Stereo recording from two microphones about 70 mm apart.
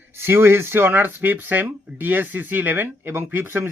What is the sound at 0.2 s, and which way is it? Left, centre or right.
Speech, right.